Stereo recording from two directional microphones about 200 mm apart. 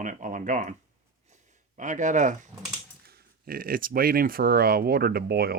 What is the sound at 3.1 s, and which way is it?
Speech, 50° right (ahead or behind).